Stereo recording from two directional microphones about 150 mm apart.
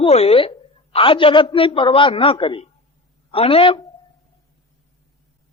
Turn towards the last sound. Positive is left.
turn(degrees=35)  # may be behind; listen again after turning